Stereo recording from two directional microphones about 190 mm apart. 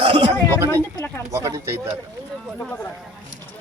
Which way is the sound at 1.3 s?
15° right (ahead or behind).